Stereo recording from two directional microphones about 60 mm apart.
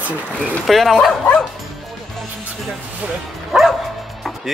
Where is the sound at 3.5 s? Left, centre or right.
Centre.